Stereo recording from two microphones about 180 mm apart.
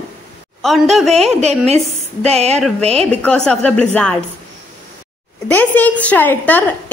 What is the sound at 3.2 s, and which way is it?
Speech, 5° left (ahead or behind).